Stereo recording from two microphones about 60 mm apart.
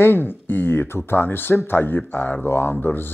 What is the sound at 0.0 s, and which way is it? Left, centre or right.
Speech, left.